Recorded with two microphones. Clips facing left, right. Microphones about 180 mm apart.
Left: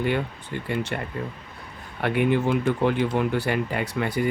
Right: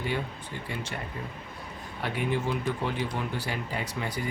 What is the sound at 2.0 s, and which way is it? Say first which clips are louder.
Speech: left 8 dB; 60° left (ahead or behind).